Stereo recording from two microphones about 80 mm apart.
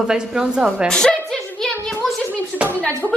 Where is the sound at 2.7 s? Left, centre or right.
Left.